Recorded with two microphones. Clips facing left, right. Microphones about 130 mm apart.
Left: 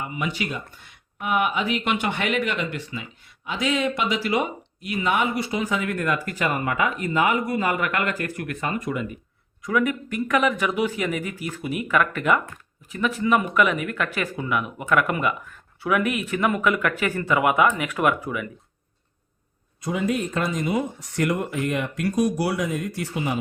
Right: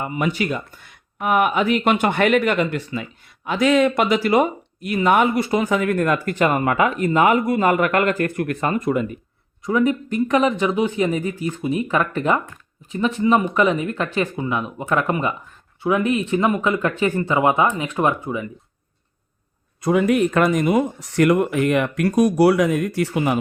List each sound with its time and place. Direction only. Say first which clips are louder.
0.0 s speech: right 6 dB; 50° right (ahead or behind)
9.6 s speech: right 4 dB; 30° right (ahead or behind)
19.8 s speech: right 8 dB; 60° right (ahead or behind)